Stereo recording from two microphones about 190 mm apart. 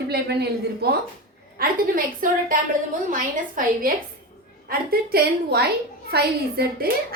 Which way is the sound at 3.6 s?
45° right (ahead or behind).